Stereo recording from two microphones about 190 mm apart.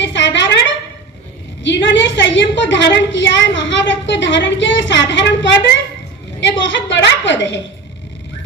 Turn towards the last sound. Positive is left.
turn(degrees=75)  # may be behind; listen again after turning